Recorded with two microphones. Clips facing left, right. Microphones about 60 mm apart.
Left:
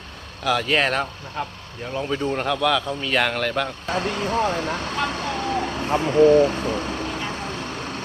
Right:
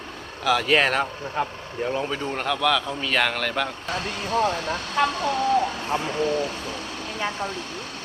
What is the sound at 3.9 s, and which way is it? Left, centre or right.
Speech, left.